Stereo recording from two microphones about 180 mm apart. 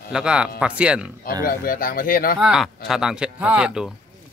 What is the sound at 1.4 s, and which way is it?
Speech, 50° left (ahead or behind).